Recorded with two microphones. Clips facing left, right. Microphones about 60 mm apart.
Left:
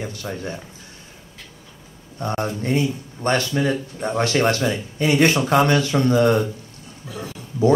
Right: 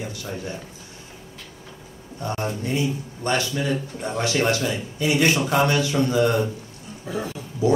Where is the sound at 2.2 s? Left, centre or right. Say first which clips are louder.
Left 3 dB; left.